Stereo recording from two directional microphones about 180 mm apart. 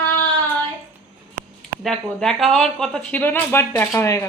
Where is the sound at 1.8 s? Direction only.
Centre (ahead or behind).